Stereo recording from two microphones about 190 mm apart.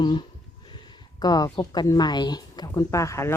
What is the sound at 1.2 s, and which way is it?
A woman's voice, 20° left (ahead or behind).